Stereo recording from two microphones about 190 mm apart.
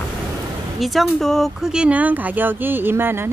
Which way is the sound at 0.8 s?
Centre (ahead or behind).